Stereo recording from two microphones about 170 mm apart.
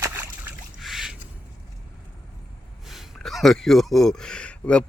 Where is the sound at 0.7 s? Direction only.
Centre (ahead or behind).